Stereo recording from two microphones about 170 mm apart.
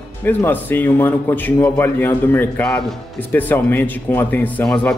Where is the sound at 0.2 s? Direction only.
10° left (ahead or behind).